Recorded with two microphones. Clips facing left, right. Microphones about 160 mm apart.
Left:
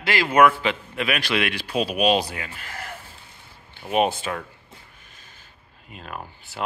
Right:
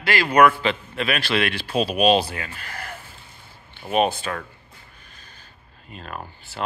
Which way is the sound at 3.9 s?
15° left (ahead or behind).